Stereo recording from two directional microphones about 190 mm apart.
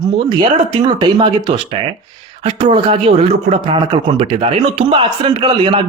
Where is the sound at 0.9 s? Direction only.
25° right (ahead or behind).